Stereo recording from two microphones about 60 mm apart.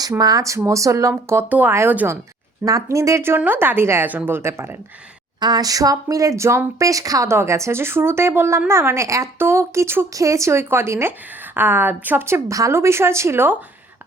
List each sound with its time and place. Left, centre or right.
0.2 s speech: right
1.5 s speech: right
2.6 s speech: right
3.2 s a woman's voice: right
4.4 s a woman's voice: right
5.5 s speech: right
6.7 s speech: right
7.3 s a woman's voice: right
9.0 s speech: right
9.4 s a woman's voice: right
10.2 s a woman's voice: right
12.5 s speech: right
12.7 s a woman's voice: right